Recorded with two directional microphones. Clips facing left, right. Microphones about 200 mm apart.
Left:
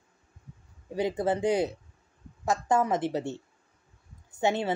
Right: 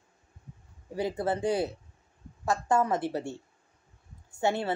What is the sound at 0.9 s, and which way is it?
A woman's voice, 20° left (ahead or behind).